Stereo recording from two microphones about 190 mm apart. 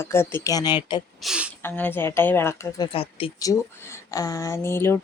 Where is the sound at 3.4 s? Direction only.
15° left (ahead or behind).